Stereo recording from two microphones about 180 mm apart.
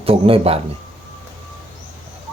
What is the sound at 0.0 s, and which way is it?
Speech, 30° right (ahead or behind).